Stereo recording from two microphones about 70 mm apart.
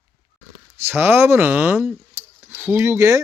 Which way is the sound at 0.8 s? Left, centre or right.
Right.